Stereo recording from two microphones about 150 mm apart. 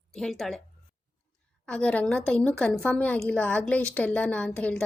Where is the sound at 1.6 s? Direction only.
5° left (ahead or behind).